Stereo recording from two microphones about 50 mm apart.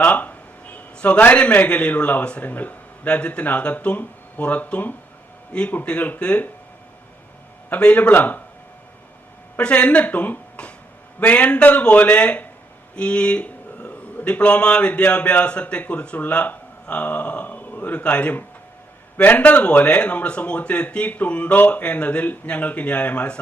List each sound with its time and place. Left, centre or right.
0.0 s a sound: left
1.2 s a man's voice: left
5.8 s a man's voice: left
7.7 s a man's voice: left
8.1 s speech: left
9.6 s a man's voice: left
19.1 s a man's voice: left
19.4 s a man's voice: left